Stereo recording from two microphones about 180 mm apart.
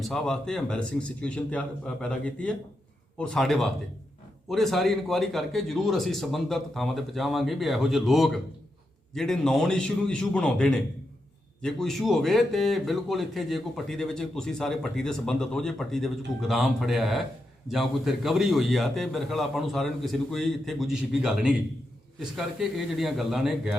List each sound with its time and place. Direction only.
0.0 s a man's voice: 5° left (ahead or behind)